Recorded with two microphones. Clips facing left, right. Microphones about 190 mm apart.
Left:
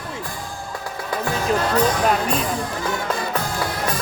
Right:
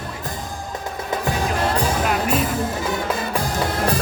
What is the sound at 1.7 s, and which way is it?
Music, 10° right (ahead or behind).